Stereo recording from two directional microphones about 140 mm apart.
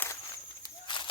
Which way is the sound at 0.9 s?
35° left (ahead or behind).